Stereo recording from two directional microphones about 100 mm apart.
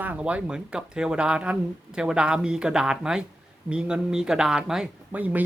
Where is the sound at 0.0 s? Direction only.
15° right (ahead or behind).